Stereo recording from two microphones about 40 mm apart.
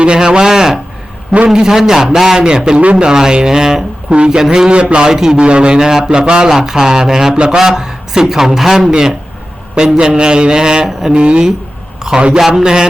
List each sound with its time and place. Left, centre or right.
0.2 s a man's voice: centre
4.7 s a man's voice: right
5.0 s a man's voice: centre
5.4 s a man's voice: right
7.3 s a man's voice: right
7.6 s a man's voice: centre